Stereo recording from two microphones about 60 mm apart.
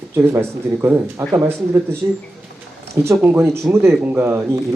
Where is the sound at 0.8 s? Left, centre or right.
Right.